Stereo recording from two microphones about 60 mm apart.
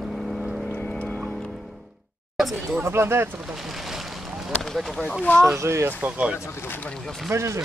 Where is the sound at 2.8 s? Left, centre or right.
Right.